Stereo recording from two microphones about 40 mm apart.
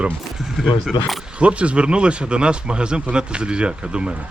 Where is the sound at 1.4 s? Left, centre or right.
Right.